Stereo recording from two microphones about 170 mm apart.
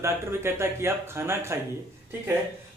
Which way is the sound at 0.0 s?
15° right (ahead or behind).